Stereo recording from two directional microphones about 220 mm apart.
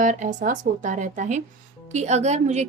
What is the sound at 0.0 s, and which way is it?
A woman's voice, 35° right (ahead or behind).